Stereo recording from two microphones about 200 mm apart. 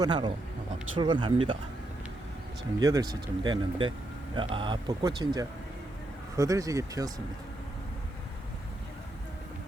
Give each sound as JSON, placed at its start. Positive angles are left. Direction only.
{"t": 0.0, "sound": "speech", "side_deg": -20}
{"t": 2.8, "sound": "speech", "side_deg": -15}